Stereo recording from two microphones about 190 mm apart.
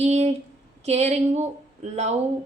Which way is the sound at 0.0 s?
35° right (ahead or behind).